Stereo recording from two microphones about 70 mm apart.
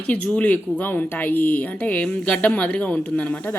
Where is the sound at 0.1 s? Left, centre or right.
Centre.